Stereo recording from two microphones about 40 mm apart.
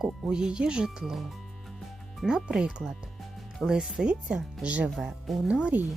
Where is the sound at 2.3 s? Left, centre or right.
Centre.